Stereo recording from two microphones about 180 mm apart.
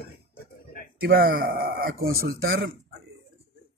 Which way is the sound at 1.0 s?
55° right (ahead or behind).